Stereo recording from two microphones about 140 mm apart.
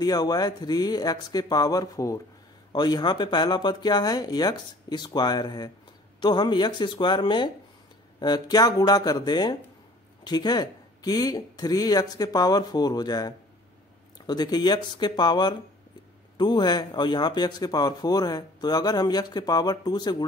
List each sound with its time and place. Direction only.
0.0 s speech: 30° left (ahead or behind)